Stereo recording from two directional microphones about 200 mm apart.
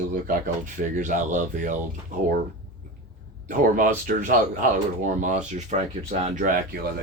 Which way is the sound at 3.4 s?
40° right (ahead or behind).